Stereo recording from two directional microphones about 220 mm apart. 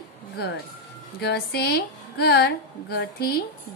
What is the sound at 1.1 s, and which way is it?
A woman's voice, 45° left (ahead or behind).